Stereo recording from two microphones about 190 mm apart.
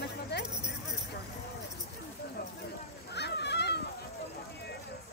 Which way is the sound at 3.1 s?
65° left (ahead or behind).